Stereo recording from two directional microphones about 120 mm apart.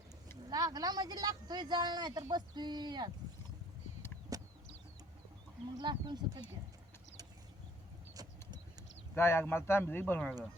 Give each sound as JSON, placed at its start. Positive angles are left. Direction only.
{"t": 0.5, "sound": "speech", "side_deg": -35}
{"t": 4.3, "sound": "vehicle", "side_deg": -30}
{"t": 5.6, "sound": "speech", "side_deg": -40}
{"t": 8.1, "sound": "clip-clop", "side_deg": -30}
{"t": 9.1, "sound": "speech", "side_deg": 20}